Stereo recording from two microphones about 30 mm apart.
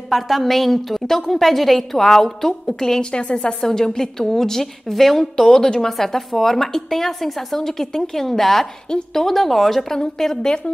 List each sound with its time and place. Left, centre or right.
0.1 s a woman's voice: centre
3.0 s a woman's voice: left
3.6 s a woman's voice: centre
5.3 s a woman's voice: left
5.9 s a woman's voice: centre
9.8 s a woman's voice: centre